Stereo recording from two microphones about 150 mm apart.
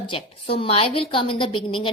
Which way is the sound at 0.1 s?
35° left (ahead or behind).